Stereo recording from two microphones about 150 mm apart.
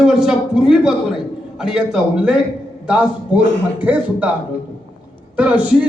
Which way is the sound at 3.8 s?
10° right (ahead or behind).